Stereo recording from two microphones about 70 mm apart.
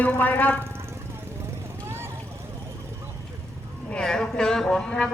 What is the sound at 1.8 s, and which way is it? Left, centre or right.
Vehicle, right.